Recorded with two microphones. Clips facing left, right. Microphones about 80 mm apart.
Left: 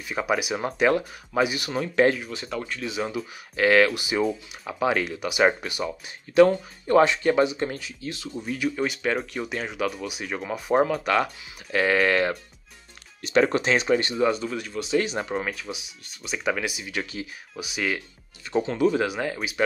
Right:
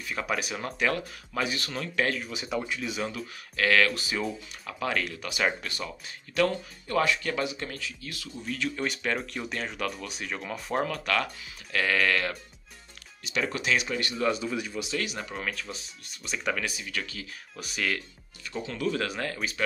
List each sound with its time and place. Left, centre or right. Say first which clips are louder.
0.0 s speech: left 5 dB; centre
2.3 s speech: even; centre
2.9 s speech: left 4 dB; centre
3.5 s speech: left 5 dB; left
13.2 s speech: left 10 dB; left
14.3 s speech: left 2 dB; centre
15.0 s speech: left 11 dB; left
15.5 s speech: left 3 dB; centre
16.5 s speech: left 4 dB; centre
17.6 s speech: left 3 dB; centre
18.6 s speech: left 8 dB; left